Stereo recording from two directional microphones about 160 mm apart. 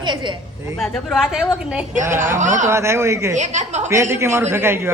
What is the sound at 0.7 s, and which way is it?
A woman's voice, centre (ahead or behind).